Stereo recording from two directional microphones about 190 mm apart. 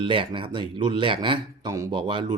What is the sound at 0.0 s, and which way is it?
Speech, 25° right (ahead or behind).